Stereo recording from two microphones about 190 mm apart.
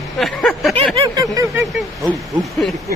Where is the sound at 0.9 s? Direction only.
25° right (ahead or behind).